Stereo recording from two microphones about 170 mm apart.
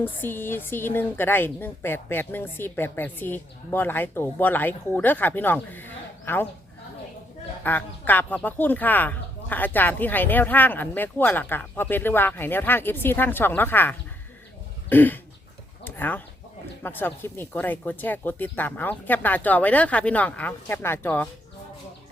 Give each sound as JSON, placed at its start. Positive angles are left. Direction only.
{"t": 0.0, "sound": "a woman's voice", "side_deg": 10}
{"t": 7.6, "sound": "a woman's voice", "side_deg": 10}
{"t": 14.8, "sound": "a sound", "side_deg": 10}
{"t": 15.8, "sound": "chicken", "side_deg": 10}
{"t": 16.8, "sound": "a woman's voice", "side_deg": 10}